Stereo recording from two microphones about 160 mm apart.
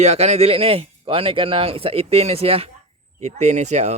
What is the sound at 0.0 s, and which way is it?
Speech, 45° right (ahead or behind).